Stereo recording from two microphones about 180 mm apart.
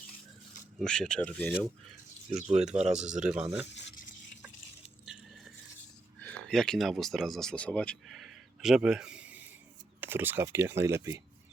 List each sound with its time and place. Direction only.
0.8 s speech: 5° left (ahead or behind)
2.3 s speech: 35° right (ahead or behind)
3.1 s speech: 5° right (ahead or behind)
5.0 s biting: centre (ahead or behind)
6.1 s a sound: 5° left (ahead or behind)
10.0 s speech: 10° right (ahead or behind)